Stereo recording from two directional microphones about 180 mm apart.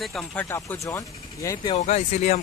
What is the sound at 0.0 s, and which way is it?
Speech, 5° left (ahead or behind).